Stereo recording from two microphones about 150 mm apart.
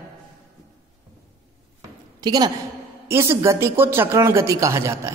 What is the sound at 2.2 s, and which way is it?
A woman's voice, 25° right (ahead or behind).